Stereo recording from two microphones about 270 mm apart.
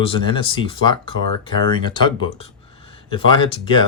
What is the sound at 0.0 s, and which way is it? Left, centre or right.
Speech, centre.